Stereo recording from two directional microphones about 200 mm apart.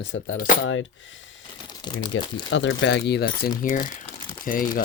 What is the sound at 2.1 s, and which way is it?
Speech, 70° left (ahead or behind).